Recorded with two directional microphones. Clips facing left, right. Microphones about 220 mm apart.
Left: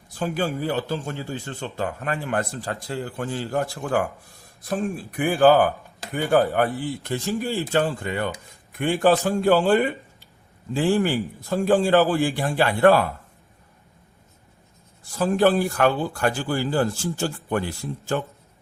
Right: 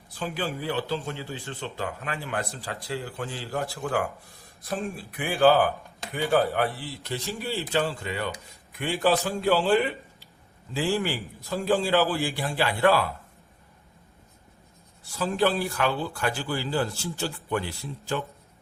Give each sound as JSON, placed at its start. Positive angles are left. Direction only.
{"t": 0.1, "sound": "speech", "side_deg": 45}
{"t": 15.0, "sound": "speech", "side_deg": 50}